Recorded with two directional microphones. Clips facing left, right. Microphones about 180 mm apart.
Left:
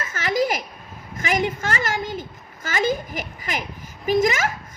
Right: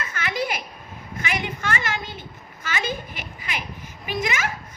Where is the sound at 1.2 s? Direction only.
40° left (ahead or behind).